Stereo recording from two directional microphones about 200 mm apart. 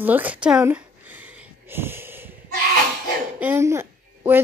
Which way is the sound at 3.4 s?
10° right (ahead or behind).